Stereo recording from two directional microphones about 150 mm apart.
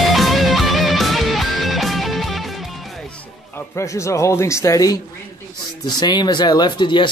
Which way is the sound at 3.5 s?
20° left (ahead or behind).